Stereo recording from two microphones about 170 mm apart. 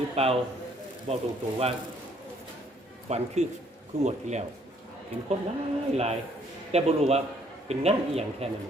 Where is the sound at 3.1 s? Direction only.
40° right (ahead or behind).